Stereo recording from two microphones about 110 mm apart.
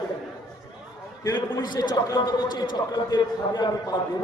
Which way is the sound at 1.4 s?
40° left (ahead or behind).